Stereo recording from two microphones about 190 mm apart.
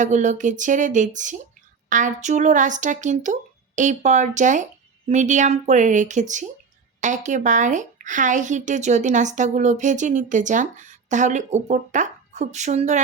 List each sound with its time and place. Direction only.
0.0 s a woman's voice: 40° right (ahead or behind)